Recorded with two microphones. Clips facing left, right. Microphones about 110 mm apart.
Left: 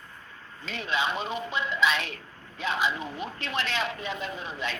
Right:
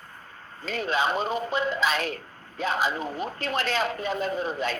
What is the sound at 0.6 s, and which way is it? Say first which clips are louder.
Speech: right 4 dB; 40° right (ahead or behind).